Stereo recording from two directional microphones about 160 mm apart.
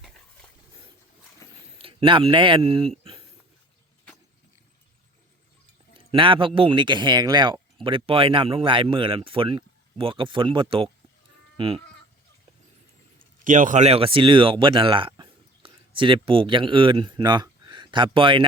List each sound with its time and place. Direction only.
1.4 s a sound: 20° left (ahead or behind)
1.8 s speech: 35° right (ahead or behind)
6.1 s speech: 30° right (ahead or behind)
11.5 s sheep: 30° right (ahead or behind)
13.1 s speech: 55° right (ahead or behind); by 18.4 s 30° right (ahead or behind)